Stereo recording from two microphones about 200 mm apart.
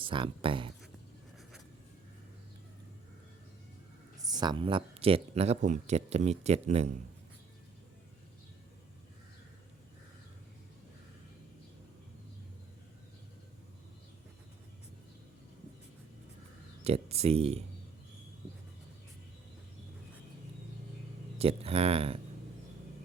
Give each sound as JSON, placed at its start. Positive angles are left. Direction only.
{"t": 0.0, "sound": "speech", "side_deg": -25}
{"t": 4.2, "sound": "speech", "side_deg": -20}
{"t": 16.8, "sound": "speech", "side_deg": -30}
{"t": 21.3, "sound": "speech", "side_deg": -30}